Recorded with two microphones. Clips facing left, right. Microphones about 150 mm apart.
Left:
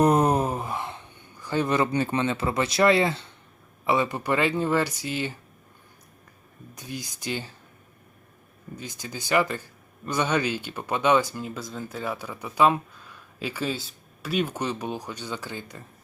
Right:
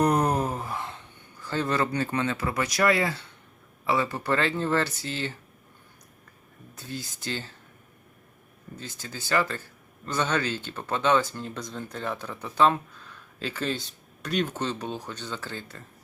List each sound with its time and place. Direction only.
0.0 s a sound: 20° left (ahead or behind)
3.8 s speech: 20° left (ahead or behind)
6.7 s speech: 15° left (ahead or behind)
8.7 s speech: 15° left (ahead or behind)